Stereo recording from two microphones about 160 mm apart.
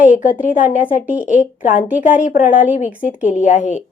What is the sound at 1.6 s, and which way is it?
Speech, 55° left (ahead or behind).